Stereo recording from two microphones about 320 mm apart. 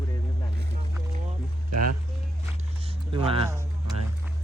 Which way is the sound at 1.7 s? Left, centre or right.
Right.